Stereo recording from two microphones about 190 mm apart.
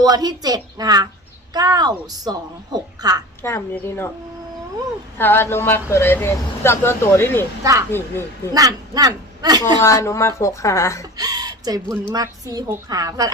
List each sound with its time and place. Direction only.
0.0 s a woman's voice: 20° right (ahead or behind)
3.4 s speech: 15° left (ahead or behind)
5.1 s speech: 10° left (ahead or behind)
7.6 s speech: 15° right (ahead or behind)
7.9 s speech: 10° left (ahead or behind)
8.5 s speech: 20° right (ahead or behind)
9.8 s speech: 15° left (ahead or behind)
11.2 s a woman's voice: 20° right (ahead or behind)